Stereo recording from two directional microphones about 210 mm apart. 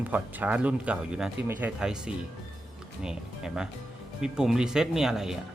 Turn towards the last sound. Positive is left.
turn(degrees=0)  # may be behind; listen again after turning